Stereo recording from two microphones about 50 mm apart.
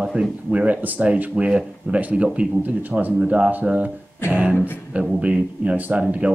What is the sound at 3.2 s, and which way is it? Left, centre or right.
Speech, right.